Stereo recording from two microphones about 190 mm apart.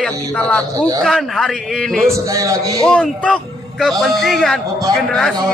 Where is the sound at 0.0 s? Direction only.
5° left (ahead or behind).